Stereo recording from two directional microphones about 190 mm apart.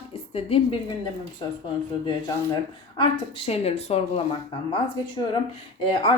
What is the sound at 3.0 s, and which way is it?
Speech, 30° left (ahead or behind).